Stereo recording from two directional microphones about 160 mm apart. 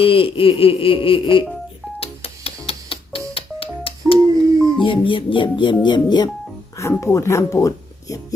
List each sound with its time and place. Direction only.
0.0 s a sound: 35° left (ahead or behind)
2.0 s music: 35° left (ahead or behind)
4.8 s speech: 30° left (ahead or behind)